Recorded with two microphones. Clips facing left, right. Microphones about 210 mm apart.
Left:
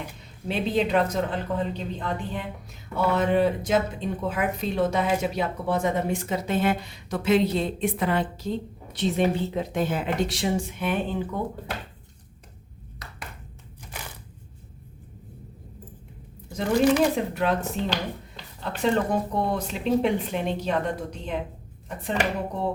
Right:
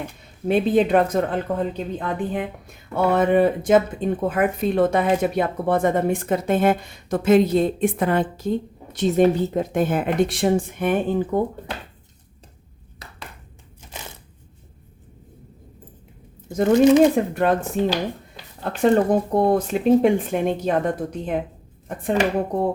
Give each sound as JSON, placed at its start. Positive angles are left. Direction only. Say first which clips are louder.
{"t": 0.4, "sound": "speech", "louder": "right 7 dB", "side_deg": -50}
{"t": 16.6, "sound": "speech", "louder": "right 7 dB", "side_deg": -20}
{"t": 17.2, "sound": "speech", "louder": "right 5 dB", "side_deg": -50}
{"t": 18.6, "sound": "speech", "louder": "right 7 dB", "side_deg": -50}